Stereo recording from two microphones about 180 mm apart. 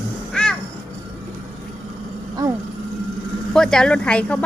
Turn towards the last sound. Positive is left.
turn(degrees=5)  # may be behind; listen again after turning